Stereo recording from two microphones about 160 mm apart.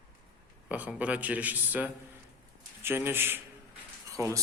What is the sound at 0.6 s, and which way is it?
A man's voice, 10° right (ahead or behind).